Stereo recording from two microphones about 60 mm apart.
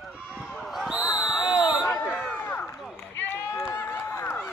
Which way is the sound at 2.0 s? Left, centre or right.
Left.